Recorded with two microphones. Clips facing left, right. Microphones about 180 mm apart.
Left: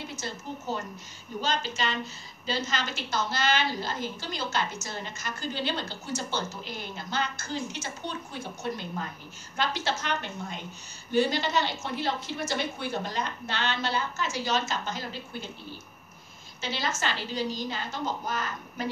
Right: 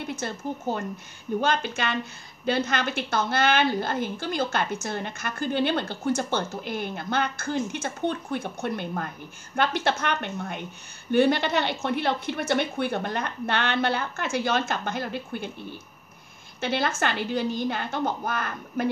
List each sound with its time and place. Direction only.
0.0 s a woman's voice: 55° right (ahead or behind)
16.6 s a woman's voice: 55° right (ahead or behind)